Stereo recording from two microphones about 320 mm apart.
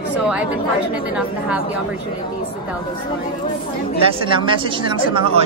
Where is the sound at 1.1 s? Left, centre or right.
Centre.